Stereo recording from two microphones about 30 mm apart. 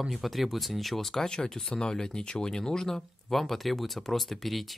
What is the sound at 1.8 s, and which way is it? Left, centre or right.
Speech, left.